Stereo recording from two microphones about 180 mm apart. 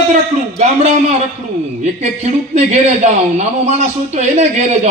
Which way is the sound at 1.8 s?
40° right (ahead or behind).